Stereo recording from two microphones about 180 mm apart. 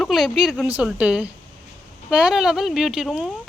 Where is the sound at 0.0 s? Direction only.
Centre (ahead or behind).